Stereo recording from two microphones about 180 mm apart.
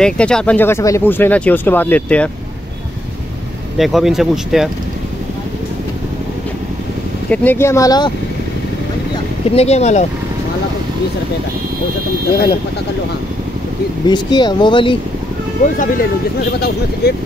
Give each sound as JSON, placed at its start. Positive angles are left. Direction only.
{"t": 0.0, "sound": "speech", "side_deg": 5}
{"t": 3.7, "sound": "speech", "side_deg": 0}
{"t": 7.2, "sound": "speech", "side_deg": 10}
{"t": 9.5, "sound": "speech", "side_deg": 35}
{"t": 14.0, "sound": "speech", "side_deg": 25}
{"t": 16.5, "sound": "speech", "side_deg": 65}